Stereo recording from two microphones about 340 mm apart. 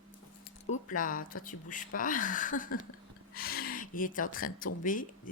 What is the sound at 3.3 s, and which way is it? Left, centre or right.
Gasp, left.